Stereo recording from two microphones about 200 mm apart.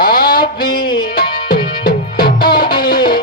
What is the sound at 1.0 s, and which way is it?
Music, 45° left (ahead or behind).